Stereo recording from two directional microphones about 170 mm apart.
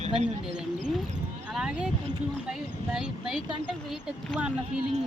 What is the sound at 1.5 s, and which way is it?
Speech, 5° right (ahead or behind).